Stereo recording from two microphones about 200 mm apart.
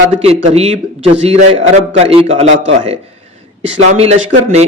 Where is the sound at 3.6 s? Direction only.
35° right (ahead or behind).